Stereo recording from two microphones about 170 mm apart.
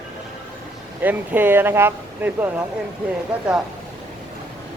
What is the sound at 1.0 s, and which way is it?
Speech, 10° right (ahead or behind).